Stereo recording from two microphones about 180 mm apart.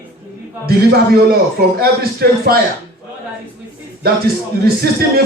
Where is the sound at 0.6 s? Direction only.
60° right (ahead or behind).